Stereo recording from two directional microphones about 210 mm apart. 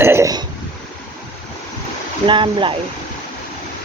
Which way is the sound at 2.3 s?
25° right (ahead or behind).